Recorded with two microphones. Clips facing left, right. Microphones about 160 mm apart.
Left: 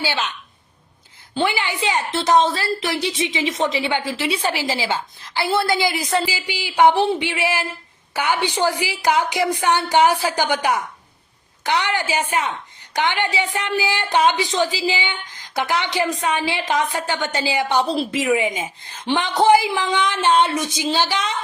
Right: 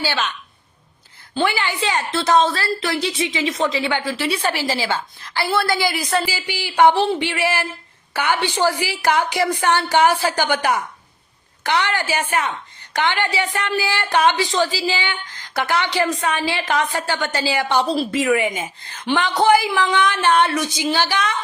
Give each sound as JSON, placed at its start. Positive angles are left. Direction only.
{"t": 0.0, "sound": "a woman's voice", "side_deg": 15}
{"t": 1.4, "sound": "a woman's voice", "side_deg": 15}